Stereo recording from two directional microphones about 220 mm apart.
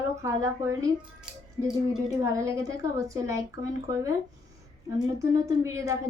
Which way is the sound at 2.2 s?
15° right (ahead or behind).